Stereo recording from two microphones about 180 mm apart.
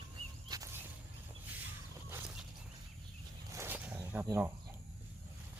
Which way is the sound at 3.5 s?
15° right (ahead or behind).